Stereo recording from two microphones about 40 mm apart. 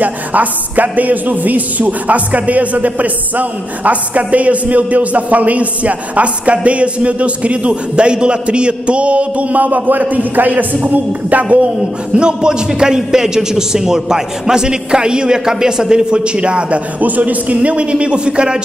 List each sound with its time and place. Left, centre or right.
0.0 s speech: right
12.2 s a man's voice: right
17.0 s a man's voice: right